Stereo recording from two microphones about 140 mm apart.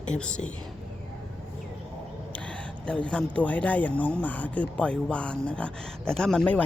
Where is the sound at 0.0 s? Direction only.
5° left (ahead or behind).